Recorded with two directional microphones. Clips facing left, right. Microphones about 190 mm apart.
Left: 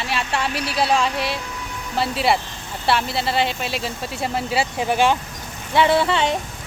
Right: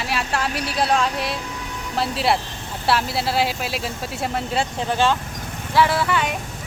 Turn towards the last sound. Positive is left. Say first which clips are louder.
# left 3 dB
turn(degrees=25)  # may be behind; listen again after turning